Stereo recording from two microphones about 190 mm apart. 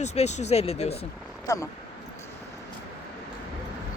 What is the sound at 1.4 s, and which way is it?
Speech, 15° left (ahead or behind).